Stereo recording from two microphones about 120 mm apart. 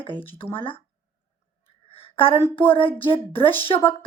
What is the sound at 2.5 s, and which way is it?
Speech, 50° left (ahead or behind).